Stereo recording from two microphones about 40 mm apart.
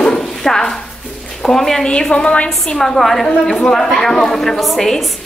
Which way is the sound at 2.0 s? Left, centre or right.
Left.